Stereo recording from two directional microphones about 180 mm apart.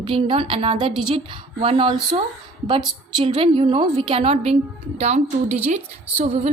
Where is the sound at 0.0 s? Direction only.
30° right (ahead or behind).